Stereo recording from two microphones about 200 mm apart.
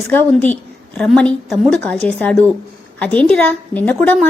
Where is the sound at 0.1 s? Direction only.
10° left (ahead or behind).